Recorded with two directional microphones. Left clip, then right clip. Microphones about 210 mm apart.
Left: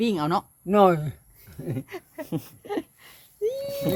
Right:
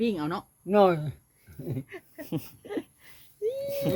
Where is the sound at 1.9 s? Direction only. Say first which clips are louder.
Left 6 dB; 55° left (ahead or behind).